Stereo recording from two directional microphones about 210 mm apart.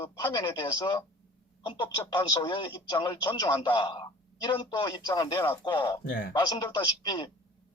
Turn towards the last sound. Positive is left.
turn(degrees=20)  # may be behind; listen again after turning